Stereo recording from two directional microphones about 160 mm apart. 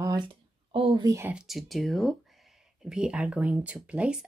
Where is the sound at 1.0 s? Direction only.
20° right (ahead or behind).